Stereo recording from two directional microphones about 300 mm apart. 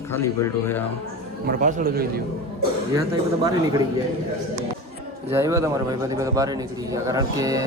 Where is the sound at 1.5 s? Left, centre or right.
Right.